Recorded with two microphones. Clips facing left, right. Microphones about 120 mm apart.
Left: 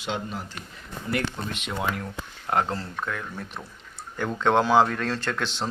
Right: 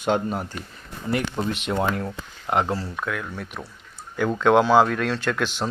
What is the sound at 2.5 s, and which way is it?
Speech, 10° right (ahead or behind).